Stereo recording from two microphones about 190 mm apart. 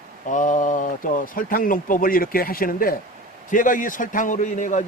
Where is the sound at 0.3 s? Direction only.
40° left (ahead or behind).